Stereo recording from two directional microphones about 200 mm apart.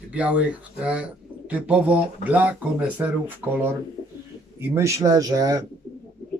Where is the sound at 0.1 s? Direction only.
5° right (ahead or behind).